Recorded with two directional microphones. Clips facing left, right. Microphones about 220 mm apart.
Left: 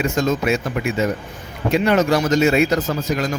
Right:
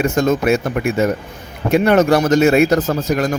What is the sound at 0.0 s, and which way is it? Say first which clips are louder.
A man's voice: right 4 dB; 55° right (ahead or behind).